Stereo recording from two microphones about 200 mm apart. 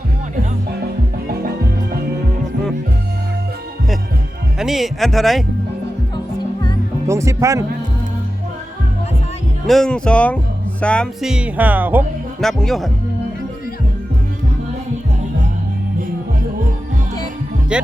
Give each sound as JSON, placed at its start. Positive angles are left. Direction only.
{"t": 4.5, "sound": "speech", "side_deg": 0}
{"t": 7.1, "sound": "speech", "side_deg": -15}
{"t": 9.6, "sound": "speech", "side_deg": 0}
{"t": 12.4, "sound": "speech", "side_deg": 0}